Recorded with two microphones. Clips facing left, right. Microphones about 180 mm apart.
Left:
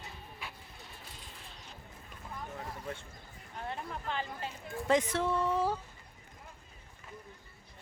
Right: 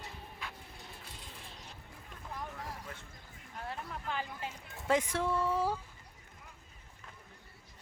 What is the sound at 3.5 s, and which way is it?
Speech, centre (ahead or behind).